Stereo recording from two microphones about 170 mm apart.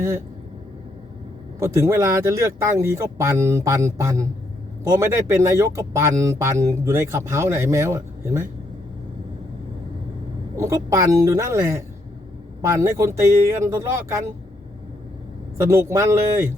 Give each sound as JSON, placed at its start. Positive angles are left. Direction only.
{"t": 1.5, "sound": "speech", "side_deg": -15}
{"t": 10.5, "sound": "a woman's voice", "side_deg": -15}
{"t": 15.7, "sound": "speech", "side_deg": -15}